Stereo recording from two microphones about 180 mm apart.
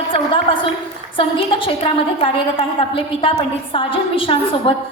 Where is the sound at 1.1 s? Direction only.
30° left (ahead or behind).